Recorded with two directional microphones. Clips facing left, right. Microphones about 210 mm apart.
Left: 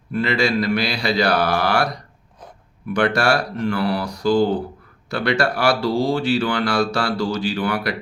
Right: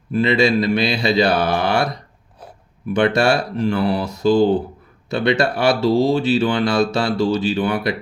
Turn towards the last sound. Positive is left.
turn(degrees=-20)  # may be behind; listen again after turning